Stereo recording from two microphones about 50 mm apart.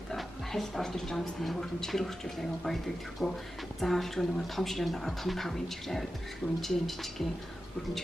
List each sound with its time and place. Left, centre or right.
0.1 s a woman's voice: centre